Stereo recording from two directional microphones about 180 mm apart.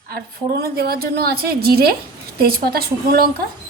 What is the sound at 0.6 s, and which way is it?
A woman's voice, 60° right (ahead or behind).